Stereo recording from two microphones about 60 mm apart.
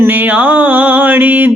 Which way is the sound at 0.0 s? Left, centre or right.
Right.